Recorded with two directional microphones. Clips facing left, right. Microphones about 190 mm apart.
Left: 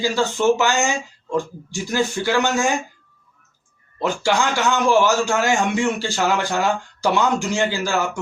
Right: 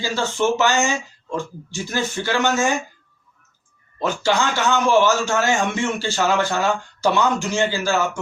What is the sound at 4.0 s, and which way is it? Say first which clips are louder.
A man's voice: even; 15° left (ahead or behind).